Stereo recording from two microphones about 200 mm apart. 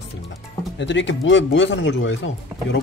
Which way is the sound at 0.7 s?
65° left (ahead or behind).